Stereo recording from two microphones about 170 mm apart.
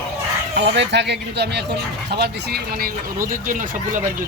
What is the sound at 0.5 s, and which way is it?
Speech, 90° right.